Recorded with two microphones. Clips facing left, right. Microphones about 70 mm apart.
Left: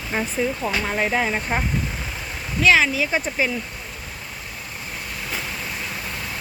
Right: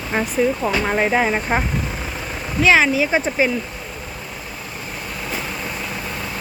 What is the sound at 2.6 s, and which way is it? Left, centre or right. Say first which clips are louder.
Speech: right 3 dB; right.